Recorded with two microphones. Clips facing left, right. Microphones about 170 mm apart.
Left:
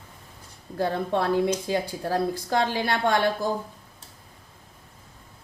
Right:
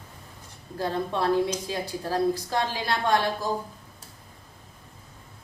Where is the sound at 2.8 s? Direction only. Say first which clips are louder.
Left 1 dB; 60° left (ahead or behind).